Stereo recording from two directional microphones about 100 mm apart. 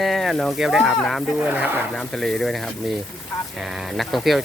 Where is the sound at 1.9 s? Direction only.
5° left (ahead or behind).